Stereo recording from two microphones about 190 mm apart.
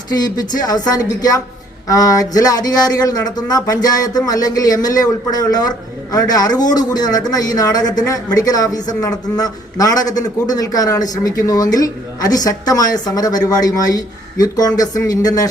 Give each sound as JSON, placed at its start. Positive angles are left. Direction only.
{"t": 0.1, "sound": "a man's voice", "side_deg": 20}